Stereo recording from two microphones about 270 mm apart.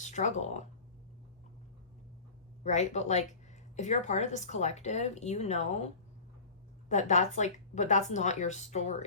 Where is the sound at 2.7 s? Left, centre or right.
Left.